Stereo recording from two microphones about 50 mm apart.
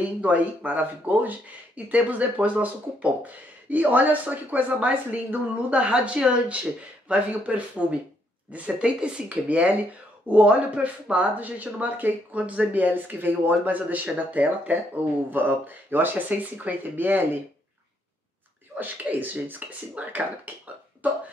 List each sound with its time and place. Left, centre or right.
0.0 s speech: right
18.8 s speech: right